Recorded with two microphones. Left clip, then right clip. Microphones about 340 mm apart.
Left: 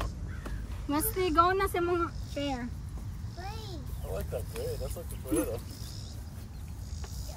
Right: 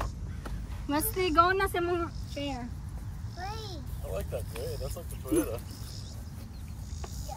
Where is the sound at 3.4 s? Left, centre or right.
Centre.